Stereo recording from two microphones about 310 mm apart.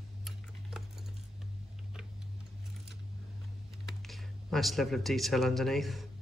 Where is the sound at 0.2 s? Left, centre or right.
Centre.